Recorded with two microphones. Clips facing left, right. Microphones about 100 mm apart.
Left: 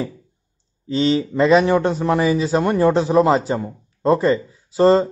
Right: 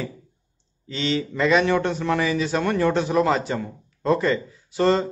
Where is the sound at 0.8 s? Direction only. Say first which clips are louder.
Left 7 dB; 30° left (ahead or behind).